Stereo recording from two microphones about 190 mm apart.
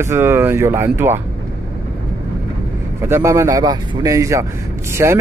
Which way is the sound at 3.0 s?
15° right (ahead or behind).